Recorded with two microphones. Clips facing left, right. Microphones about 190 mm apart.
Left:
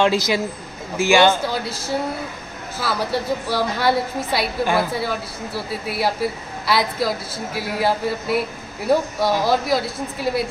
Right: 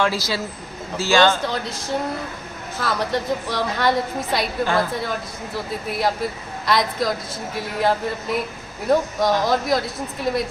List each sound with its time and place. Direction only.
0.0 s a woman's voice: 20° left (ahead or behind)
1.4 s a woman's voice: 5° left (ahead or behind)
2.8 s a woman's voice: 5° left (ahead or behind)